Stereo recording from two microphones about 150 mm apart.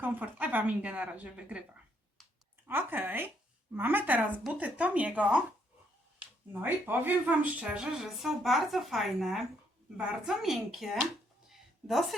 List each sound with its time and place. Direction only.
0.0 s speech: 10° right (ahead or behind)
6.5 s speech: 10° right (ahead or behind)
11.4 s a sound: centre (ahead or behind)